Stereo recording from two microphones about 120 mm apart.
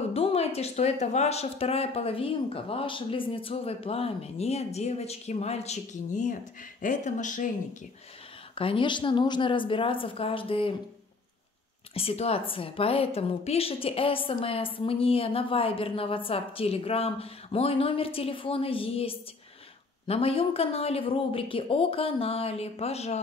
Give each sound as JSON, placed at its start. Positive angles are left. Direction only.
{"t": 0.1, "sound": "speech", "side_deg": 55}
{"t": 8.5, "sound": "a woman's voice", "side_deg": 45}
{"t": 11.9, "sound": "a woman's voice", "side_deg": 55}